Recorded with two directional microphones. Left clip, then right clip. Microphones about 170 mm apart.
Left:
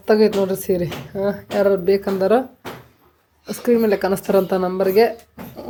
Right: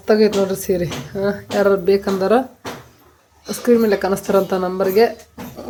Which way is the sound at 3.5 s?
15° left (ahead or behind).